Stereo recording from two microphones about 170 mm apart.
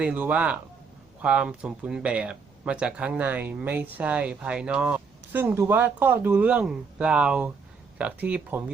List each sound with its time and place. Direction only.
0.0 s speech: 5° right (ahead or behind)